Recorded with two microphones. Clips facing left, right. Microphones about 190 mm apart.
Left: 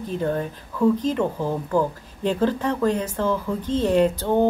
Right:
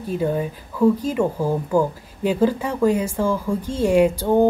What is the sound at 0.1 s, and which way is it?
Speech, 10° right (ahead or behind).